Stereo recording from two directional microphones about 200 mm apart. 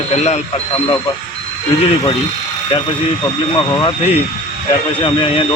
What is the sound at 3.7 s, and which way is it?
Speech, 25° left (ahead or behind).